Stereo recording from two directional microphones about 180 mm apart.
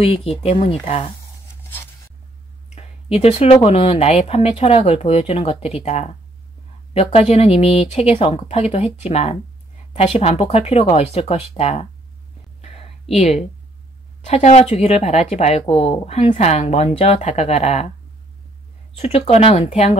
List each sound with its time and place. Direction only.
0.0 s speech: 35° left (ahead or behind)
2.7 s speech: 35° left (ahead or behind)
14.2 s speech: 40° left (ahead or behind)
19.1 s speech: 35° left (ahead or behind)